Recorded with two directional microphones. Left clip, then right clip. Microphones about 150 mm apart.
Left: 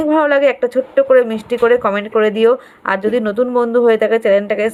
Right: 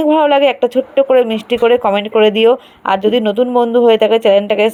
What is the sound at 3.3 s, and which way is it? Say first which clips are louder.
Speech: right 2 dB; 5° right (ahead or behind).